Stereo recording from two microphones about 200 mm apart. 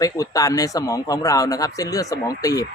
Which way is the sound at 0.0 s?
15° left (ahead or behind).